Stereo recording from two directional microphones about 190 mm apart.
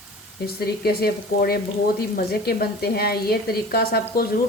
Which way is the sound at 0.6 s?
55° left (ahead or behind).